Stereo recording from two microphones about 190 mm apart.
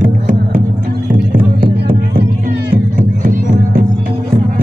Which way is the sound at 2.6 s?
45° right (ahead or behind).